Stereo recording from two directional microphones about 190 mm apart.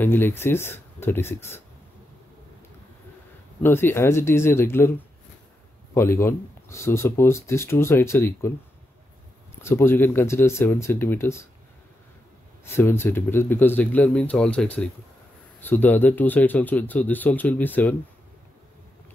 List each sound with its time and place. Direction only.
0.0 s speech: 10° left (ahead or behind)
3.6 s speech: 10° left (ahead or behind)
5.9 s speech: 15° left (ahead or behind)
9.6 s speech: 15° left (ahead or behind)
12.6 s speech: 10° left (ahead or behind)